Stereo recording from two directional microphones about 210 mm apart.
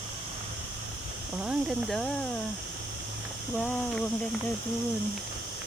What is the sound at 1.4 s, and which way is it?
Speech, 5° right (ahead or behind).